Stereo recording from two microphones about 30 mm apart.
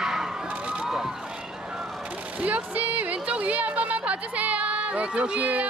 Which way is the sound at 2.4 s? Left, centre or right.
Right.